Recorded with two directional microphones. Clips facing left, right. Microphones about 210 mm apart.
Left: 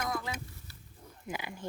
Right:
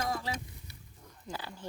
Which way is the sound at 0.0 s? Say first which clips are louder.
Right 1 dB; 25° right (ahead or behind).